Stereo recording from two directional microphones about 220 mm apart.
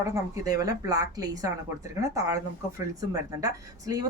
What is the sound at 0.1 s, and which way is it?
Speech, 15° right (ahead or behind).